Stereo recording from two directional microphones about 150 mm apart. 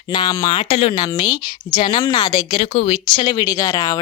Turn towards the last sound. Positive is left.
turn(degrees=25)  # may be behind; listen again after turning